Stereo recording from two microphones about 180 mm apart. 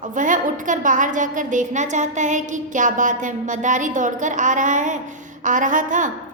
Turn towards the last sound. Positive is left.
turn(degrees=-45)  # may be behind; listen again after turning